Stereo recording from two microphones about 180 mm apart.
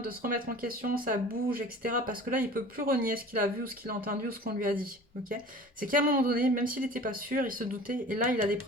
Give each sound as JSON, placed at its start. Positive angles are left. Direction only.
{"t": 0.0, "sound": "speech", "side_deg": -55}